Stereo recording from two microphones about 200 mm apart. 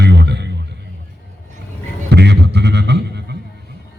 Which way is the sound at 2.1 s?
55° right (ahead or behind).